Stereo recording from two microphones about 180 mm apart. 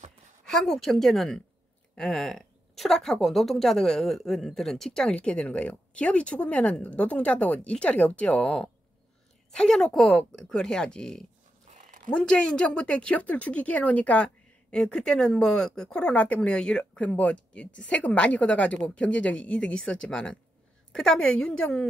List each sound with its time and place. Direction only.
0.5 s a woman's voice: centre (ahead or behind)
11.6 s dog: 45° right (ahead or behind)
12.1 s a woman's voice: 5° left (ahead or behind)